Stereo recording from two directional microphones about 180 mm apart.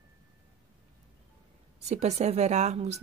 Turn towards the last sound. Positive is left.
turn(degrees=-35)  # may be behind; listen again after turning